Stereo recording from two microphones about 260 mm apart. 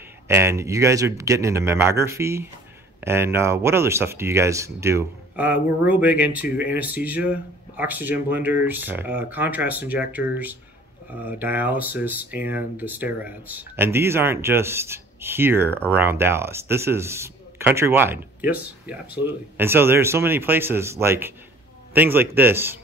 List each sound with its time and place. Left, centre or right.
0.3 s speech: centre